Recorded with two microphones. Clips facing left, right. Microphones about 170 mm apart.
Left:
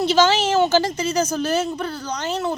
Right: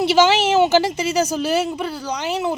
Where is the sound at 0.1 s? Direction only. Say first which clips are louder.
Right 2 dB; 10° right (ahead or behind).